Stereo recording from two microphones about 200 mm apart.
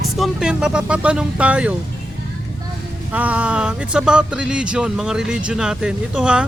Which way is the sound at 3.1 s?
5° right (ahead or behind).